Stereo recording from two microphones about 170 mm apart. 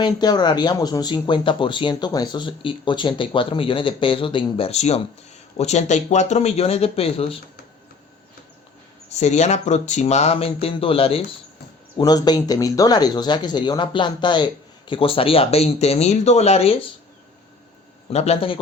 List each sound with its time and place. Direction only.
0.0 s speech: 25° left (ahead or behind)
9.1 s speech: 40° left (ahead or behind)
11.9 s speech: 25° left (ahead or behind)
18.1 s speech: 40° left (ahead or behind)